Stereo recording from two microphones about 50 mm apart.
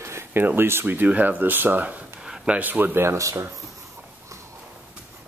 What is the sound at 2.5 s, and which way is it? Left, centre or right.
Speech, right.